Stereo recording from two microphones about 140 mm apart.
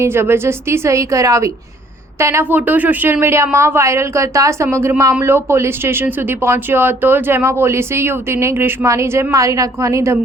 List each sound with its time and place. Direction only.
0.0 s speech: 15° right (ahead or behind)